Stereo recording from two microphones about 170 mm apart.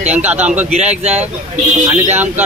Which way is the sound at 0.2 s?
10° right (ahead or behind).